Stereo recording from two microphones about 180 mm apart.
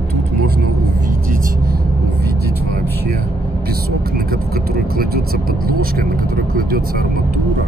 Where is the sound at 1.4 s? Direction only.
50° right (ahead or behind).